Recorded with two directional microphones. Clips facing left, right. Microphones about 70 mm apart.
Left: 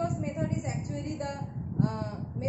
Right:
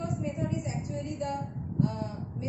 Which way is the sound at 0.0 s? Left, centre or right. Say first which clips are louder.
Left 2 dB; left.